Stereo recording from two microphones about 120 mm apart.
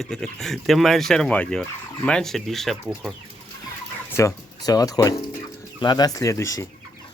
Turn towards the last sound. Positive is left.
turn(degrees=25)  # may be behind; listen again after turning